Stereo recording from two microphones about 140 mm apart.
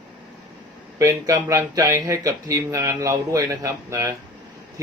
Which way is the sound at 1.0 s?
25° right (ahead or behind).